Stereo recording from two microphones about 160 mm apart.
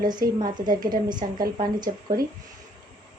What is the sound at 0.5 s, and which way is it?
Speech, 25° right (ahead or behind).